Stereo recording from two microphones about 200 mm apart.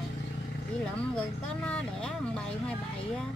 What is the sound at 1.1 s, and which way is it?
Speech, 5° left (ahead or behind).